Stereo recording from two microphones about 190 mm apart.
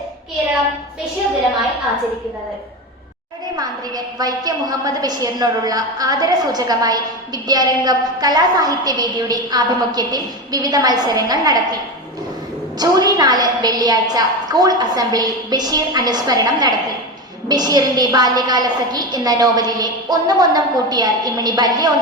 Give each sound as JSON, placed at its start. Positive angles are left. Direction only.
{"t": 3.5, "sound": "a woman's voice", "side_deg": -20}
{"t": 12.8, "sound": "a woman's voice", "side_deg": -20}